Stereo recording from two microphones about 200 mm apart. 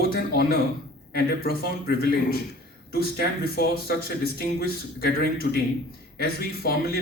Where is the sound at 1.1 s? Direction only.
50° left (ahead or behind).